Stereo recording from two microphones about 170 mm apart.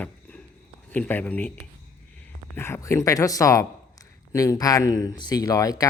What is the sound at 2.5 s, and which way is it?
Speech, 15° left (ahead or behind).